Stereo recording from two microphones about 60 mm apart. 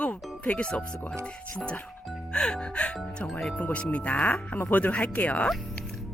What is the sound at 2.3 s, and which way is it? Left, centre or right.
Speech, centre.